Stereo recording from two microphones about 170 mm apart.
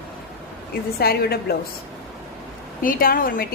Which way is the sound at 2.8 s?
55° left (ahead or behind).